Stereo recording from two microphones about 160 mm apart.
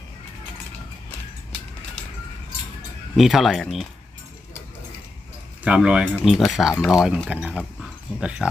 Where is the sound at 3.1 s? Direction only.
Centre (ahead or behind).